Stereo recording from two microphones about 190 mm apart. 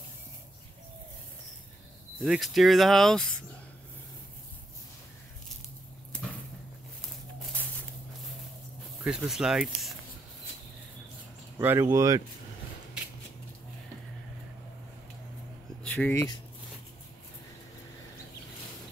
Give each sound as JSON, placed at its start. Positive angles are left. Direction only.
{"t": 2.2, "sound": "speech", "side_deg": 0}
{"t": 9.0, "sound": "speech", "side_deg": -5}
{"t": 11.5, "sound": "speech", "side_deg": -15}
{"t": 15.8, "sound": "speech", "side_deg": 10}